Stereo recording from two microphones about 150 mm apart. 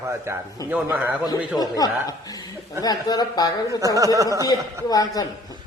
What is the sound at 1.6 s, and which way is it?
A man's voice, 25° left (ahead or behind).